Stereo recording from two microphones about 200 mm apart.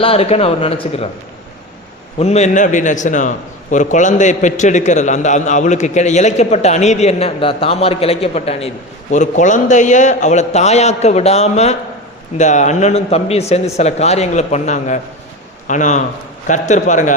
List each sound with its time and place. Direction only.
0.0 s a man's voice: 30° left (ahead or behind)
2.1 s a man's voice: 30° left (ahead or behind)